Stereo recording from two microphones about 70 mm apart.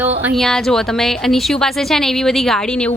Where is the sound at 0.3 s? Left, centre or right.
Centre.